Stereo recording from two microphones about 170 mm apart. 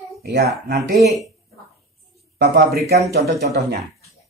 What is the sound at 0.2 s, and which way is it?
Speech, 75° right (ahead or behind).